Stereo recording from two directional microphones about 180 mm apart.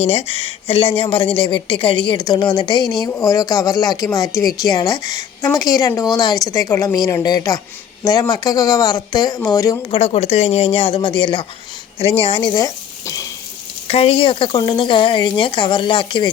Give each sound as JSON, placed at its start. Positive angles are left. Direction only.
{"t": 0.0, "sound": "speech", "side_deg": 35}
{"t": 9.9, "sound": "speech", "side_deg": 35}
{"t": 13.8, "sound": "speech", "side_deg": 35}